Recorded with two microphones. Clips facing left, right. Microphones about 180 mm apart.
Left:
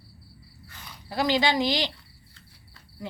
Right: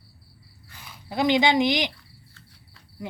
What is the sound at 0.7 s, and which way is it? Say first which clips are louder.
Speech: right 1 dB; 20° right (ahead or behind).